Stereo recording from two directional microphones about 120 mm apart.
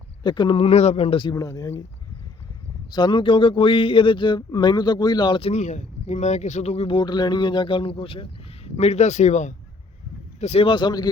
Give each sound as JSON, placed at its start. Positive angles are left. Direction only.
{"t": 0.2, "sound": "speech", "side_deg": 40}
{"t": 1.3, "sound": "speech", "side_deg": 30}
{"t": 2.9, "sound": "speech", "side_deg": 40}
{"t": 5.4, "sound": "speech", "side_deg": 65}
{"t": 10.4, "sound": "speech", "side_deg": 65}
{"t": 10.7, "sound": "speech", "side_deg": 40}